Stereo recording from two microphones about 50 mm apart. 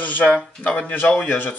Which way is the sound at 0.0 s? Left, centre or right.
Left.